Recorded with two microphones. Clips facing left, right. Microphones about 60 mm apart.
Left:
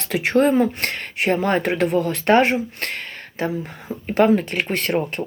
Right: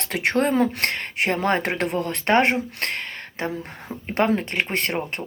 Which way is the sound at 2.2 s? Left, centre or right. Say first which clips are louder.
Left 3 dB; right.